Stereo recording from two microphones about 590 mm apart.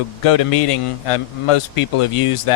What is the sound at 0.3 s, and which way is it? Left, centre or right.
A man's voice, left.